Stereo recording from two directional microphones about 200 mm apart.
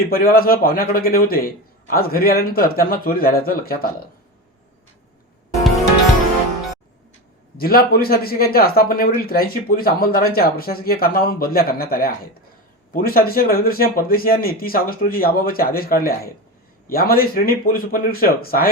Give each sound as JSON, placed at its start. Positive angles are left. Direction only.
{"t": 0.1, "sound": "a man's voice", "side_deg": 50}
{"t": 7.5, "sound": "a man's voice", "side_deg": 50}